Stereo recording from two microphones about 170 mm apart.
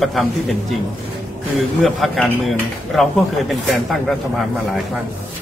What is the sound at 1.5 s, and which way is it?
Speech, centre (ahead or behind).